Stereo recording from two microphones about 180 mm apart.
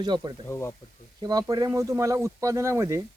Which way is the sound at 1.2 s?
20° right (ahead or behind).